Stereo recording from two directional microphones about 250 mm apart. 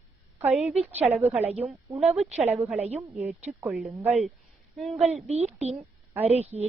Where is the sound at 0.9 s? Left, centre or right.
Right.